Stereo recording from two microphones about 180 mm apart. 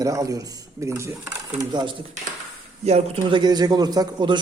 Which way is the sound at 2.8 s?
35° right (ahead or behind).